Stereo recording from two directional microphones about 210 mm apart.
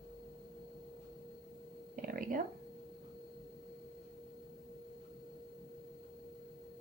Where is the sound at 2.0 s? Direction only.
45° right (ahead or behind).